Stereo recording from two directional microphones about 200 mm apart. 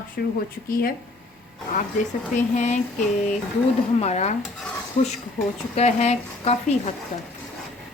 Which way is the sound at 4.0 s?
35° left (ahead or behind).